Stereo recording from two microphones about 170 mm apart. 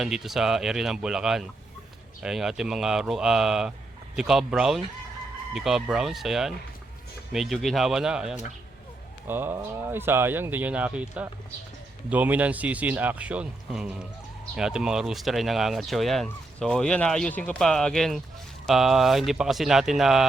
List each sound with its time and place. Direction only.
0.0 s speech: centre (ahead or behind)